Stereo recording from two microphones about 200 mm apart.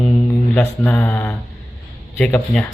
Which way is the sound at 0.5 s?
5° left (ahead or behind).